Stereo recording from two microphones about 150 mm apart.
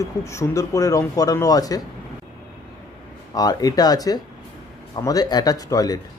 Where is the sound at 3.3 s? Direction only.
25° left (ahead or behind).